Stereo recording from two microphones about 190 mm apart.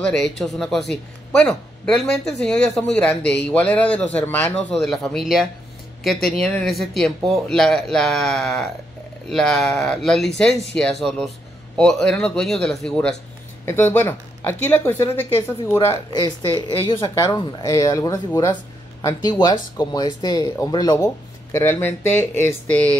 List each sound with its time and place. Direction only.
0.0 s speech: 5° left (ahead or behind)